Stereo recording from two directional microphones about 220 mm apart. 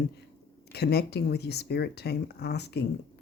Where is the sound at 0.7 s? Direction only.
45° left (ahead or behind).